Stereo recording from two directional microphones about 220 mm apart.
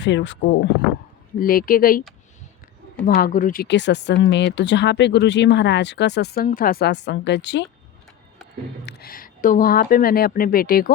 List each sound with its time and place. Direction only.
0.0 s speech: 55° left (ahead or behind)
1.4 s a woman's voice: 40° left (ahead or behind)
3.1 s speech: 40° left (ahead or behind)
8.9 s a woman's voice: 45° left (ahead or behind)